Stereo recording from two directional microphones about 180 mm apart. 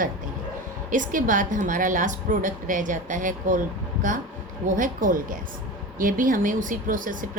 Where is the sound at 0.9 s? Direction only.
45° right (ahead or behind).